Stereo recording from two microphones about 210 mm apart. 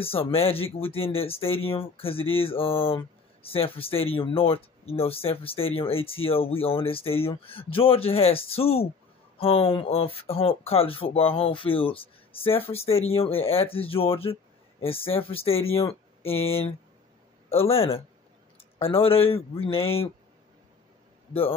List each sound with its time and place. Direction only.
0.0 s speech: 25° left (ahead or behind)
16.2 s speech: 75° left (ahead or behind)
17.5 s speech: 25° left (ahead or behind)
21.3 s a man's voice: 25° left (ahead or behind)